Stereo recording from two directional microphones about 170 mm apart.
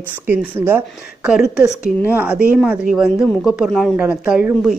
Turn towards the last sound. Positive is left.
turn(degrees=-5)  # may be behind; listen again after turning